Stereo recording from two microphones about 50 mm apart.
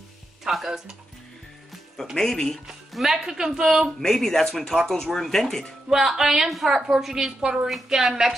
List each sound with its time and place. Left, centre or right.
0.4 s speech: centre
2.1 s speech: centre
2.9 s a woman's voice: centre
4.0 s speech: centre
5.9 s a woman's voice: centre